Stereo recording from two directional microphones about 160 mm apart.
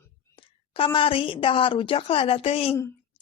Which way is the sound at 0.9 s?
35° left (ahead or behind).